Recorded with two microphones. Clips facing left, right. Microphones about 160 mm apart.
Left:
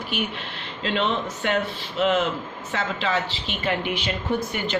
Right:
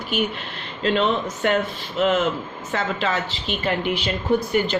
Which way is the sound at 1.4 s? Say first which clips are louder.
Right 4 dB; 45° right (ahead or behind).